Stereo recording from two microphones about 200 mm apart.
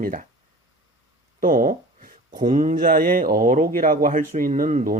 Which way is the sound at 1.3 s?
45° right (ahead or behind).